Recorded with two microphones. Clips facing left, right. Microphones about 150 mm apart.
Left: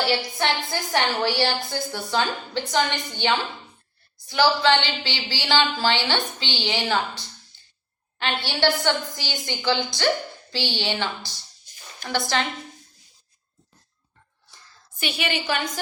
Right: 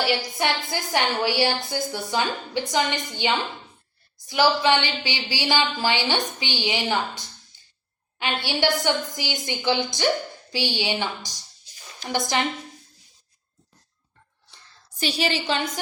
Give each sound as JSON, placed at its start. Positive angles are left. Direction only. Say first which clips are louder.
{"t": 0.3, "sound": "a woman's voice", "louder": "even", "side_deg": -15}
{"t": 4.3, "sound": "a woman's voice", "louder": "even", "side_deg": -15}
{"t": 8.2, "sound": "a woman's voice", "louder": "left 1 dB", "side_deg": -15}
{"t": 14.8, "sound": "a woman's voice", "louder": "right 3 dB", "side_deg": -35}